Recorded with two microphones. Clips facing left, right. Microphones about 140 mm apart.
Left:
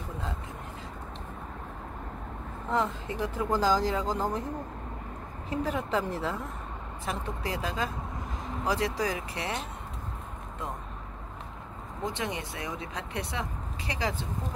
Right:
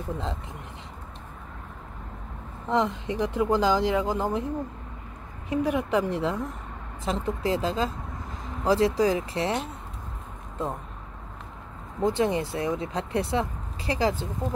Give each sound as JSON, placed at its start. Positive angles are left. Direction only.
{"t": 2.7, "sound": "a woman's voice", "side_deg": -20}
{"t": 5.5, "sound": "a woman's voice", "side_deg": -15}
{"t": 12.0, "sound": "speech", "side_deg": -30}